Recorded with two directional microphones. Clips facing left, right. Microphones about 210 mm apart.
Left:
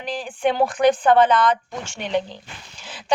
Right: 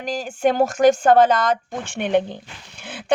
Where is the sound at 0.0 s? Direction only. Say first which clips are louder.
Right 2 dB; 45° right (ahead or behind).